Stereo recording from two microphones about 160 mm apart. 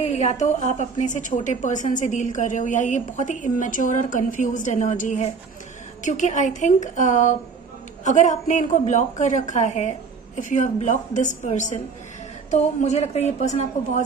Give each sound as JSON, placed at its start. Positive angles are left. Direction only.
{"t": 0.0, "sound": "a woman's voice", "side_deg": 45}